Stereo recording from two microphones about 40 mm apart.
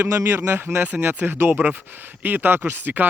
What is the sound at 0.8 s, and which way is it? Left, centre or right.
Speech, right.